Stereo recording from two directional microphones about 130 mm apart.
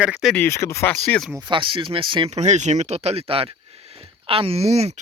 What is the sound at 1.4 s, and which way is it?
Speech, 40° right (ahead or behind).